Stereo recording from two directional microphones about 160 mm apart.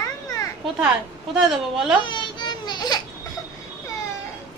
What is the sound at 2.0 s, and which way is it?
Baby cry, 30° left (ahead or behind).